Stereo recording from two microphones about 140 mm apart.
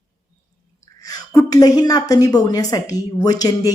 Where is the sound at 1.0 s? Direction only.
25° left (ahead or behind).